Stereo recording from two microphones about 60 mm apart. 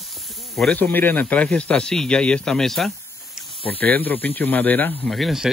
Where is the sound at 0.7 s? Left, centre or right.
Left; by 3.4 s centre.